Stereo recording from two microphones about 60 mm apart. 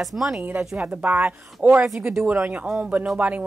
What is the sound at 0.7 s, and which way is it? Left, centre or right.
Speech, centre.